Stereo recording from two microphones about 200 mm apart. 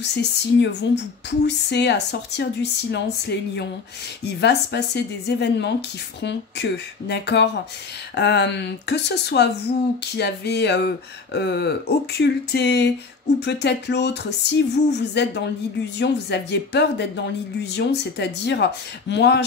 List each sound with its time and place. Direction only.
0.0 s speech: 60° left (ahead or behind)